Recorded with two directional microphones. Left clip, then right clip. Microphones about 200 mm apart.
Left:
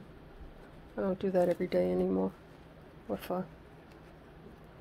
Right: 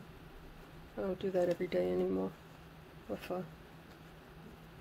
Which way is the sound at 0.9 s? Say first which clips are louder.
Left 5 dB; 20° left (ahead or behind).